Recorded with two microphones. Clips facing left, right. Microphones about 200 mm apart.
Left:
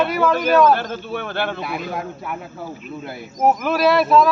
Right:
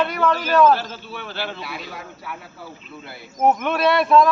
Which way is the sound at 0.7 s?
55° left (ahead or behind).